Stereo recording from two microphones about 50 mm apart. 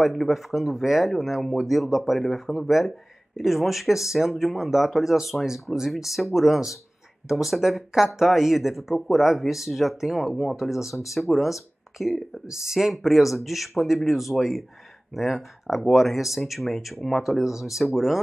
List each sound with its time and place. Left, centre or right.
0.0 s speech: centre